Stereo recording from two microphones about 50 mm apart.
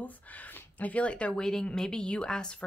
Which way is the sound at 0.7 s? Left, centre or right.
Left.